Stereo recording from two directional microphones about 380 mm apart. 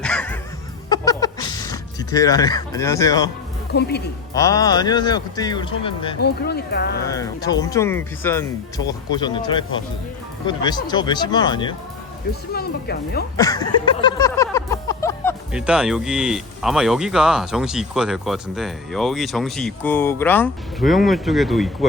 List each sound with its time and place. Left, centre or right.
0.0 s music: centre
0.9 s a sound: centre
3.7 s speech: left
4.4 s speech: centre
6.2 s speech: left
7.1 s speech: centre
12.3 s speech: left
13.3 s music: centre